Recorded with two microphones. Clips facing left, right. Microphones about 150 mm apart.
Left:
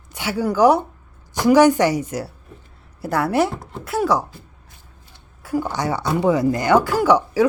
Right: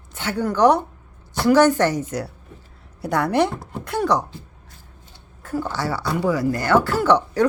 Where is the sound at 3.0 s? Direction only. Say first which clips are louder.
Even; 5° left (ahead or behind).